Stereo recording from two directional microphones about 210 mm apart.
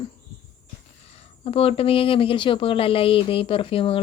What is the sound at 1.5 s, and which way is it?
Speech, 25° left (ahead or behind).